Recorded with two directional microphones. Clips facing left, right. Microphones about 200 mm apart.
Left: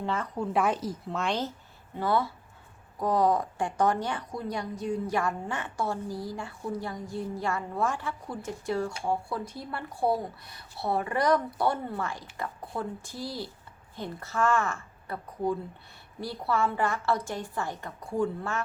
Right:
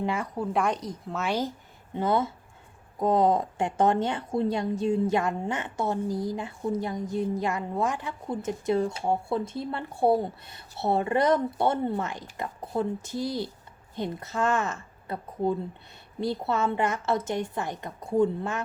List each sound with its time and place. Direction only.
0.0 s a woman's voice: 10° right (ahead or behind)
0.5 s speech: 5° left (ahead or behind)
2.0 s a woman's voice: 20° right (ahead or behind)